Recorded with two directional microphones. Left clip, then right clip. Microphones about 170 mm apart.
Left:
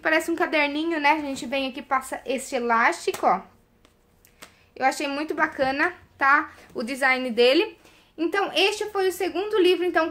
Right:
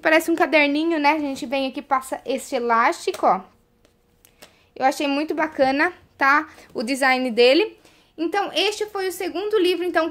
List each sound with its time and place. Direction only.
0.0 s a woman's voice: 55° right (ahead or behind)
4.7 s speech: 45° right (ahead or behind)